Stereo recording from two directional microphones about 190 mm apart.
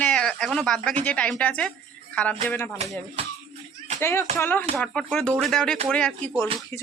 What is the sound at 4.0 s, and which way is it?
Speech, 15° left (ahead or behind).